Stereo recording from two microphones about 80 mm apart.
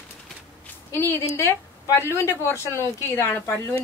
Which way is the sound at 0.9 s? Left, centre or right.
Left.